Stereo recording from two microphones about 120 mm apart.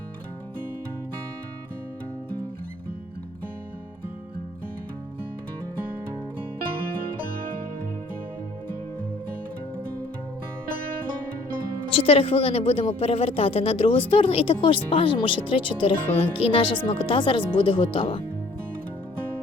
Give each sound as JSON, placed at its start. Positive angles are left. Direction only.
{"t": 11.9, "sound": "a woman's voice", "side_deg": 50}